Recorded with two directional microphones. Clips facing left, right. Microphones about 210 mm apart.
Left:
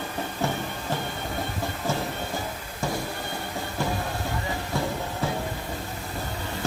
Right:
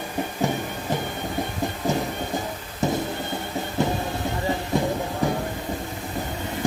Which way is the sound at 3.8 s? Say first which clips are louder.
Right 4 dB; 20° right (ahead or behind).